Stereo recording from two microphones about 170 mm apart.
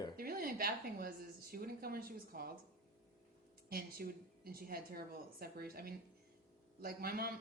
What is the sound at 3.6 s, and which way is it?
Speech, 65° right (ahead or behind).